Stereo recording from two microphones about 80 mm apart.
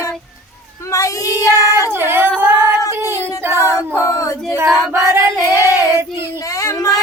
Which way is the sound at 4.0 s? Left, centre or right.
Left.